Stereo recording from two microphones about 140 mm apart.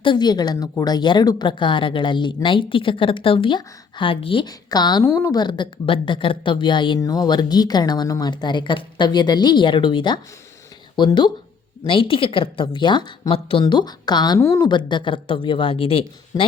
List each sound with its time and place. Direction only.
0.0 s speech: 35° left (ahead or behind)